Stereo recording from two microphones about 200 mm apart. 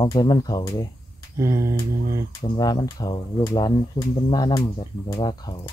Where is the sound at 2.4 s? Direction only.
20° left (ahead or behind).